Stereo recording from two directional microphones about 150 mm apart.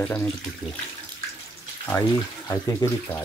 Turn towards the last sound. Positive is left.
turn(degrees=15)  # may be behind; listen again after turning